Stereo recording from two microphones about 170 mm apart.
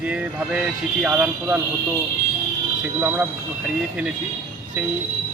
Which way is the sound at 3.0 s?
10° right (ahead or behind).